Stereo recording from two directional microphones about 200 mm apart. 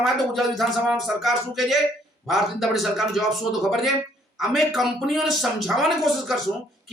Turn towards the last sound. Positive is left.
turn(degrees=0)  # may be behind; listen again after turning